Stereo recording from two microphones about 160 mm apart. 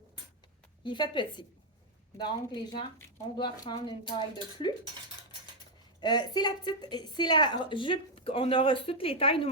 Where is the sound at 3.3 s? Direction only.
30° left (ahead or behind).